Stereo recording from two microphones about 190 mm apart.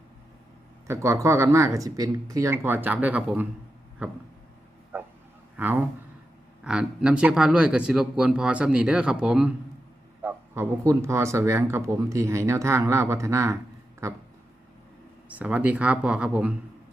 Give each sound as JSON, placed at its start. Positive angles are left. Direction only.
{"t": 0.9, "sound": "speech", "side_deg": -15}
{"t": 4.9, "sound": "bow-wow", "side_deg": -10}
{"t": 5.5, "sound": "speech", "side_deg": -10}
{"t": 15.3, "sound": "speech", "side_deg": -10}